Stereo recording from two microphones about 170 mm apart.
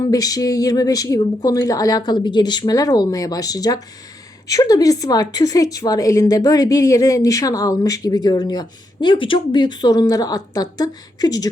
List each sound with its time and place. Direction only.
0.0 s a woman's voice: 20° left (ahead or behind)